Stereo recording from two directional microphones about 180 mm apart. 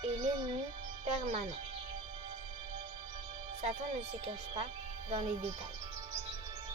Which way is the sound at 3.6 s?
35° right (ahead or behind).